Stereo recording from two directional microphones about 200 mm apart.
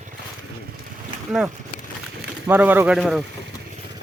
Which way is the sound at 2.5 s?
10° right (ahead or behind).